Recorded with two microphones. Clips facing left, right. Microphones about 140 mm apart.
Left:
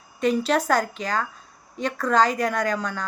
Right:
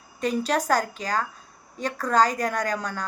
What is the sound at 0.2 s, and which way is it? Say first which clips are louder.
A woman's voice: left 3 dB; 40° right (ahead or behind).